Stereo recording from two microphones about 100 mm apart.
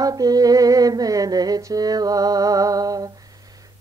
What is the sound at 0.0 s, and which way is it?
Music, 40° right (ahead or behind).